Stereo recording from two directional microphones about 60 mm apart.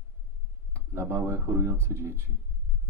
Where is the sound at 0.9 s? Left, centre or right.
Right.